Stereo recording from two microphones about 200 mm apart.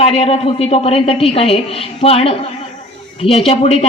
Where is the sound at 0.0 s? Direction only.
30° left (ahead or behind).